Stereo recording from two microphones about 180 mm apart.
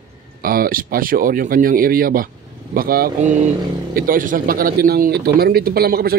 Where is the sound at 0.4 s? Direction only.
55° right (ahead or behind).